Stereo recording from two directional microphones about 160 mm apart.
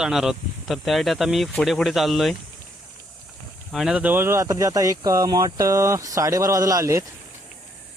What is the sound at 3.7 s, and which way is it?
Speech, 5° right (ahead or behind).